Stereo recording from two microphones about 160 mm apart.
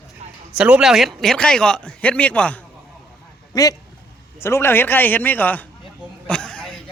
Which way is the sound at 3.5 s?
20° left (ahead or behind).